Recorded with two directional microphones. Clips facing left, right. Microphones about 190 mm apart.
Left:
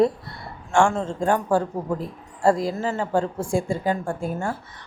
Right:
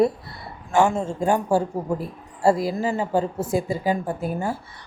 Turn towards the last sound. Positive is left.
turn(degrees=-5)  # may be behind; listen again after turning